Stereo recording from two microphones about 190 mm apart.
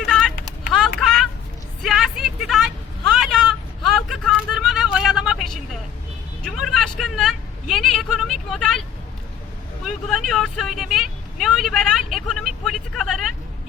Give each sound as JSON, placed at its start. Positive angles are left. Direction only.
{"t": 0.0, "sound": "vehicle", "side_deg": 0}
{"t": 0.7, "sound": "a sound", "side_deg": 0}
{"t": 1.8, "sound": "vehicle", "side_deg": 0}
{"t": 9.8, "sound": "vehicle", "side_deg": 0}